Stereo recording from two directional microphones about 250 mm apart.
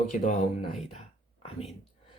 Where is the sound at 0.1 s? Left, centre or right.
Left.